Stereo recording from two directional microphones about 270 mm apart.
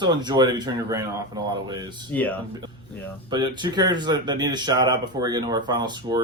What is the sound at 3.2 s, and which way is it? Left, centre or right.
Speech, centre.